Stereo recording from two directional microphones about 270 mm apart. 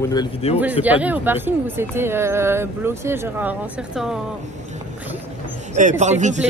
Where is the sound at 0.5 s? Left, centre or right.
Centre.